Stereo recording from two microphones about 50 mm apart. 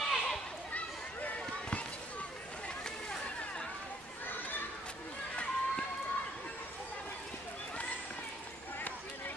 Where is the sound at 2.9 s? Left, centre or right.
Centre.